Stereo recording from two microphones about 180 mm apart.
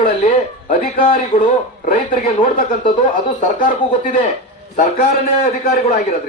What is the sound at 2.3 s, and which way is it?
Speech, 30° left (ahead or behind).